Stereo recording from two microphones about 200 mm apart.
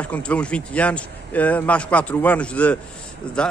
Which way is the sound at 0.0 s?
5° left (ahead or behind).